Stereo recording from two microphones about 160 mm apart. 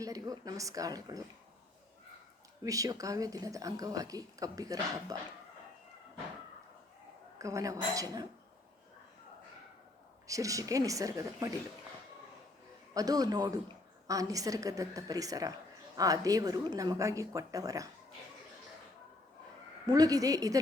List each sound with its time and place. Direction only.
0.0 s speech: 20° right (ahead or behind)
2.6 s speech: 20° right (ahead or behind)
7.3 s a woman's voice: 20° right (ahead or behind)
10.2 s speech: 20° right (ahead or behind)
12.9 s speech: 25° right (ahead or behind)
19.9 s speech: 25° right (ahead or behind)